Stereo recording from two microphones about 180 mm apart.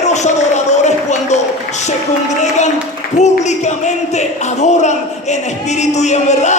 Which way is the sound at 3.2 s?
40° left (ahead or behind).